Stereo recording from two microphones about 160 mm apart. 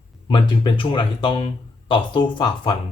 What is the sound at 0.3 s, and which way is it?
Speech, 30° left (ahead or behind).